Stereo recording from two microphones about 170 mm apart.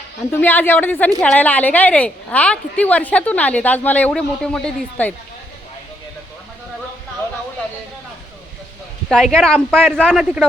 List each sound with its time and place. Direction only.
0.3 s a woman's voice: 10° left (ahead or behind)
9.0 s speech: 5° left (ahead or behind)